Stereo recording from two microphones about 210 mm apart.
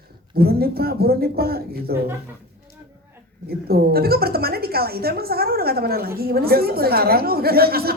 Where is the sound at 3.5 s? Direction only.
45° right (ahead or behind).